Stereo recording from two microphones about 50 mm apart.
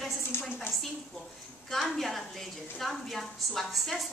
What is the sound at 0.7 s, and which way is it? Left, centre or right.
Speech, left.